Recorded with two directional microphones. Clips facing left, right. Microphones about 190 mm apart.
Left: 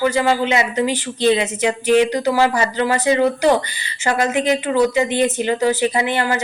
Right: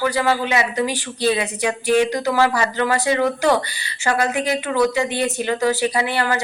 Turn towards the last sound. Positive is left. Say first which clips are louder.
# left 2 dB
turn(degrees=20)  # may be behind; listen again after turning